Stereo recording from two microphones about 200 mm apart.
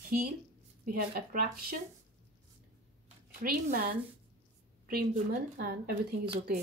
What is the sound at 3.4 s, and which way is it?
Speech, 45° right (ahead or behind).